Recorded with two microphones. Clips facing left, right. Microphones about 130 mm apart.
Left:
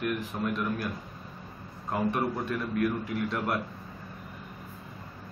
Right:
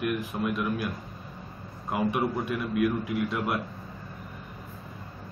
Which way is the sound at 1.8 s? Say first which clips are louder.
Right 1 dB; 10° right (ahead or behind).